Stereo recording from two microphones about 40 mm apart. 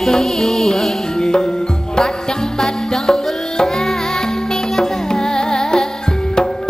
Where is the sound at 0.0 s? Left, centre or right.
Centre.